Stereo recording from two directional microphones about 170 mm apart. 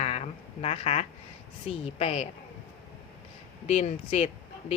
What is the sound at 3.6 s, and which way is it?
Speech, 40° left (ahead or behind).